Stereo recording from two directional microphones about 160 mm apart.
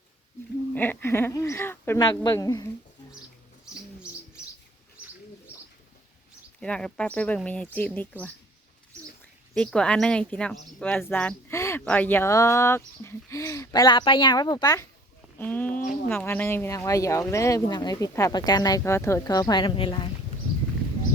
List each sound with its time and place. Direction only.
0.7 s speech: 10° left (ahead or behind)
2.0 s speech: 25° left (ahead or behind)
6.6 s speech: 5° left (ahead or behind)
9.6 s speech: 5° left (ahead or behind); by 14.8 s 25° left (ahead or behind)
15.4 s speech: 10° left (ahead or behind); by 20.1 s 30° left (ahead or behind)